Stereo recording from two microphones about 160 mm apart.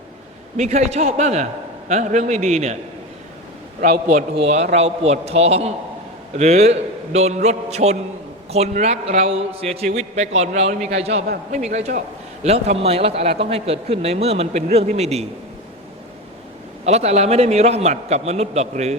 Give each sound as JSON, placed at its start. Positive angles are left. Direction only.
{"t": 0.5, "sound": "a man's voice", "side_deg": -45}
{"t": 4.4, "sound": "a man's voice", "side_deg": -45}
{"t": 11.9, "sound": "a man's voice", "side_deg": -60}
{"t": 12.5, "sound": "speech", "side_deg": -40}
{"t": 16.8, "sound": "a man's voice", "side_deg": -45}